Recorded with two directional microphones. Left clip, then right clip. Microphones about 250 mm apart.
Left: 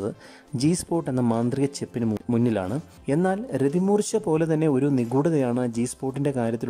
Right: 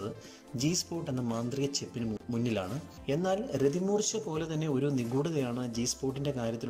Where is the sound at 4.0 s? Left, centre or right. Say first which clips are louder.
Left 10 dB; left.